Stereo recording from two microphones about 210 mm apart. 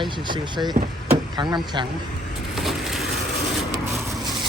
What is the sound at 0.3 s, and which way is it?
Speech, 20° right (ahead or behind).